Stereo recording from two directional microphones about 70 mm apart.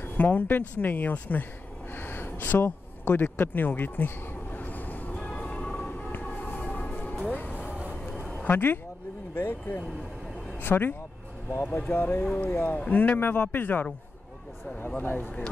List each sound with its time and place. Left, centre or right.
0.0 s speech: left
2.0 s a sound: left
5.1 s music: centre
7.9 s a sound: centre
8.5 s speech: left
15.0 s speech: left